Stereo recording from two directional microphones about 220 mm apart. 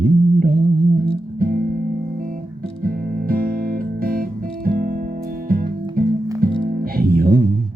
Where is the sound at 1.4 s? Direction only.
40° right (ahead or behind).